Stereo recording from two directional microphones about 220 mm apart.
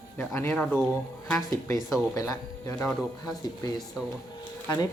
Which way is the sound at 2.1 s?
15° left (ahead or behind).